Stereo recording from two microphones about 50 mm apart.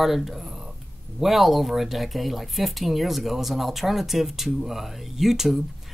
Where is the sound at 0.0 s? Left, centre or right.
Centre.